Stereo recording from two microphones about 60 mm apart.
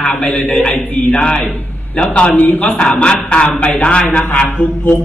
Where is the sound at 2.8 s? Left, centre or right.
Centre.